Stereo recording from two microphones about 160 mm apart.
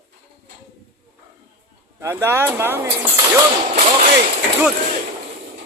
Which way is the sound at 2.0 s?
15° right (ahead or behind).